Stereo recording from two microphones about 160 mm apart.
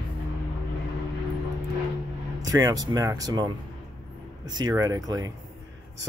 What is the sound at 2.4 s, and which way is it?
Speech, 20° right (ahead or behind).